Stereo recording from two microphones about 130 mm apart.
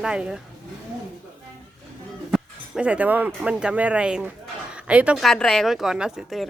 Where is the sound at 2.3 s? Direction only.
10° right (ahead or behind).